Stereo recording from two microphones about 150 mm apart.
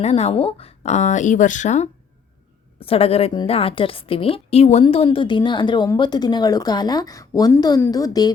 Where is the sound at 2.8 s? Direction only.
40° left (ahead or behind).